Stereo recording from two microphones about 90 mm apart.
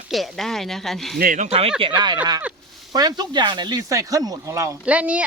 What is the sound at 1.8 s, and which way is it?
Speech, 55° right (ahead or behind).